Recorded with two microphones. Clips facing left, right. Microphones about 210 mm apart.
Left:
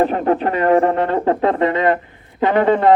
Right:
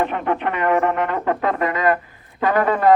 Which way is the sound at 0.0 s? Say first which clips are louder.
Left 5 dB; 35° left (ahead or behind).